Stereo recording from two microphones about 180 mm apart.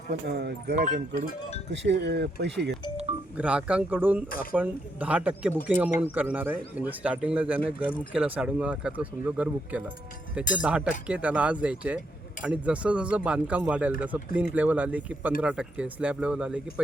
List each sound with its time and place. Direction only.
0.1 s speech: 65° right (ahead or behind)
0.8 s speech: 45° right (ahead or behind)
1.7 s speech: 75° right (ahead or behind)
3.3 s speech: 5° right (ahead or behind)